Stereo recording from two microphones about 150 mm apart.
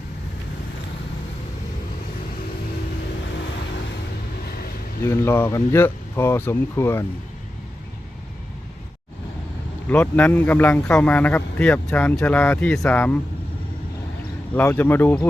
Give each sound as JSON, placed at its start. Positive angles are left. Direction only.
{"t": 5.0, "sound": "a man's voice", "side_deg": 15}
{"t": 9.9, "sound": "a man's voice", "side_deg": 10}
{"t": 14.5, "sound": "a man's voice", "side_deg": 10}